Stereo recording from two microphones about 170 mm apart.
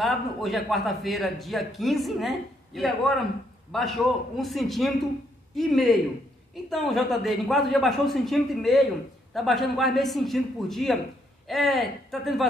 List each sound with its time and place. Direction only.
0.0 s a man's voice: centre (ahead or behind)